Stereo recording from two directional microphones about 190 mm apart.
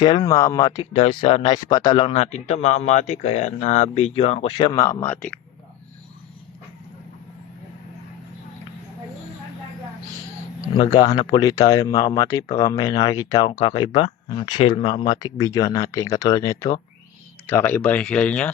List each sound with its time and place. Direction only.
0.0 s speech: 25° left (ahead or behind)
0.9 s speech: 30° left (ahead or behind); by 5.4 s 10° left (ahead or behind)
10.8 s speech: 20° left (ahead or behind); by 18.5 s 5° left (ahead or behind)